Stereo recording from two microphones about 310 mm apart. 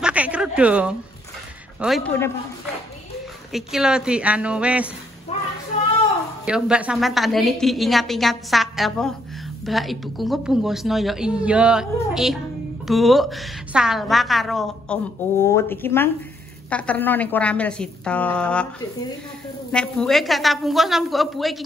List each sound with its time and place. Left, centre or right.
0.0 s a sound: centre
1.8 s a woman's voice: centre
3.5 s a woman's voice: centre
5.3 s child singing: left
6.4 s a woman's voice: centre